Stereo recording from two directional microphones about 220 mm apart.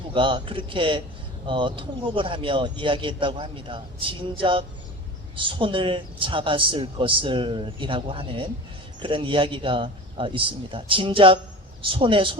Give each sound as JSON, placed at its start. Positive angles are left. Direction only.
{"t": 0.1, "sound": "speech", "side_deg": -20}